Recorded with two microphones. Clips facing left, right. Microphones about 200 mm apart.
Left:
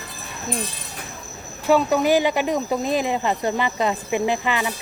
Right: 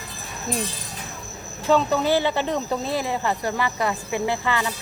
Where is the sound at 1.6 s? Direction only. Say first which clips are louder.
Left 2 dB; 10° left (ahead or behind).